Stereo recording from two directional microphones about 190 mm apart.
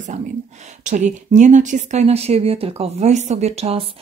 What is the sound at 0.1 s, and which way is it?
Speech, 35° right (ahead or behind).